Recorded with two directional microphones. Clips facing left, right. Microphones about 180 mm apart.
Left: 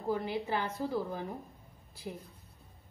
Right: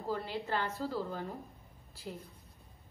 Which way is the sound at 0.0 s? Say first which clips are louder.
Left 4 dB; 15° left (ahead or behind).